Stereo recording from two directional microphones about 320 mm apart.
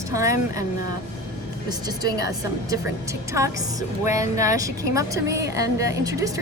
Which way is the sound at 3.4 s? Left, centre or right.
Centre.